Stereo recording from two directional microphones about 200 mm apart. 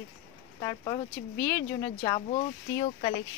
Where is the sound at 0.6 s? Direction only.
20° left (ahead or behind).